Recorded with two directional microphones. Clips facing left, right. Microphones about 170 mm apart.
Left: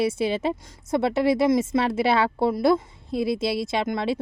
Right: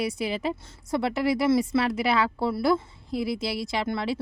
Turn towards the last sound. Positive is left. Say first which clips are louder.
# left 3 dB
turn(degrees=20)  # may be behind; listen again after turning